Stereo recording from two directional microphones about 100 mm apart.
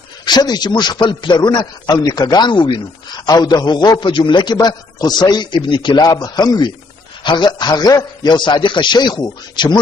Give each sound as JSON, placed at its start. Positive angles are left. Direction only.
{"t": 0.2, "sound": "a man's voice", "side_deg": 45}